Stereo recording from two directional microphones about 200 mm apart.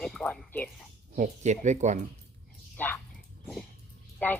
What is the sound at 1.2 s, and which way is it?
Speech, 35° right (ahead or behind).